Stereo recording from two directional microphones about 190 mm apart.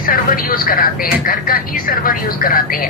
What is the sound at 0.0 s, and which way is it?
Speech, 50° left (ahead or behind).